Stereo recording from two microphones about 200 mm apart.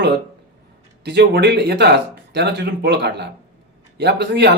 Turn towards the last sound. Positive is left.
turn(degrees=-55)  # may be behind; listen again after turning